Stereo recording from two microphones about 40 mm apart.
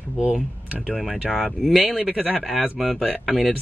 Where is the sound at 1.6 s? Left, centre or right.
Centre.